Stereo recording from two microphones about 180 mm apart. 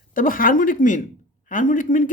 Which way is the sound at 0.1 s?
50° left (ahead or behind).